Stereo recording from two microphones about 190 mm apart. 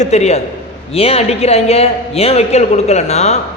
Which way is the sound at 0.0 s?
35° left (ahead or behind).